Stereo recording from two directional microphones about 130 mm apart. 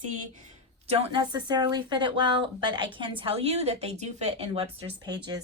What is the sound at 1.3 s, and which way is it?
A woman's voice, 35° right (ahead or behind).